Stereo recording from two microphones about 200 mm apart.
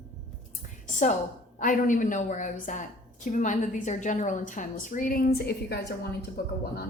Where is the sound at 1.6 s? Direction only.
40° left (ahead or behind).